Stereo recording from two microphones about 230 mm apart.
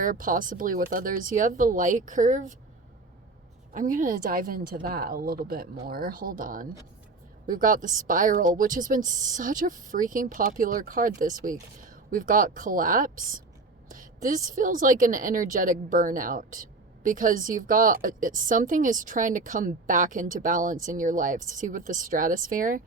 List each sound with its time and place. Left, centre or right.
0.0 s a woman's voice: right
3.7 s a woman's voice: right